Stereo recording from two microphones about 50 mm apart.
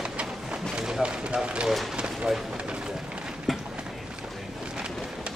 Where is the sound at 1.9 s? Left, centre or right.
Right.